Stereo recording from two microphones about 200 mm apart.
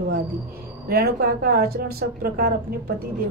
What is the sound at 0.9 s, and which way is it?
A woman's voice, 50° right (ahead or behind).